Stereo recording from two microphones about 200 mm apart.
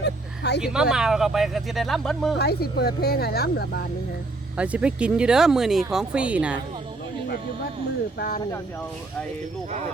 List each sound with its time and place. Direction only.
0.0 s vehicle: 55° left (ahead or behind)
0.6 s speech: 5° right (ahead or behind)
2.4 s speech: 55° left (ahead or behind)
4.5 s speech: 5° right (ahead or behind)